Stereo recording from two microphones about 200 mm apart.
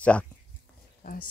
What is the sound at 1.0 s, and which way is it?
Speech, 50° left (ahead or behind).